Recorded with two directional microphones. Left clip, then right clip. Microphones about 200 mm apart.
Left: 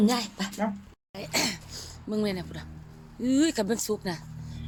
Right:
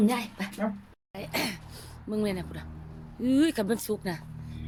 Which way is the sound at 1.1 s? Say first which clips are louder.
Left 3 dB; 5° left (ahead or behind).